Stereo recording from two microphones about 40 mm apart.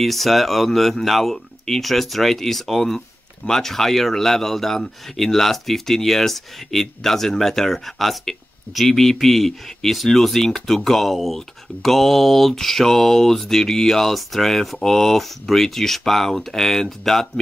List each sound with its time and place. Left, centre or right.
0.0 s speech: centre